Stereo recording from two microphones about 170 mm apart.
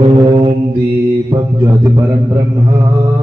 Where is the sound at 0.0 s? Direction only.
35° right (ahead or behind).